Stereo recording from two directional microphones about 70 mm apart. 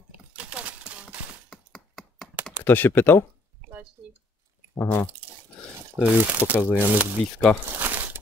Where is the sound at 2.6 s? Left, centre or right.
Left.